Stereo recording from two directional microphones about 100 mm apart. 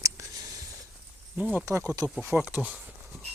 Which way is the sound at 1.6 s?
30° right (ahead or behind).